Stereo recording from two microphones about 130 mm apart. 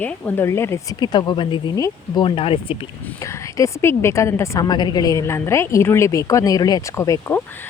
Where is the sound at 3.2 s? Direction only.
25° left (ahead or behind).